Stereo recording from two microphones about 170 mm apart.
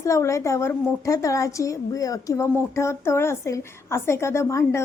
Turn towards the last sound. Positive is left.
turn(degrees=15)  # may be behind; listen again after turning